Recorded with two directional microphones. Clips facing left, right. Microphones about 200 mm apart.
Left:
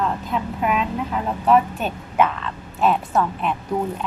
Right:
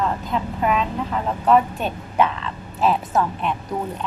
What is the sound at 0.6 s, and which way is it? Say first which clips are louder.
A woman's voice: right 1 dB; 5° left (ahead or behind).